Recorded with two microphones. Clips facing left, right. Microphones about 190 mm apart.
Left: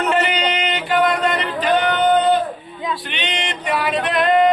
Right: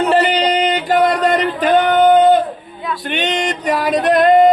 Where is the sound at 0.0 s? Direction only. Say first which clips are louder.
Right 5 dB; 35° right (ahead or behind).